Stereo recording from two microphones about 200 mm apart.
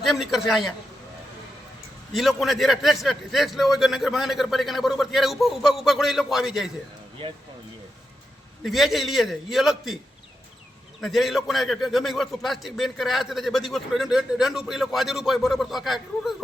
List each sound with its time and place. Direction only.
0.0 s a man's voice: centre (ahead or behind)
2.1 s a man's voice: centre (ahead or behind)
8.6 s a man's voice: centre (ahead or behind)
11.0 s a man's voice: centre (ahead or behind)